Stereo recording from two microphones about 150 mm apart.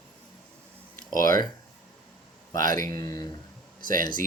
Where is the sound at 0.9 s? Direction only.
65° right (ahead or behind).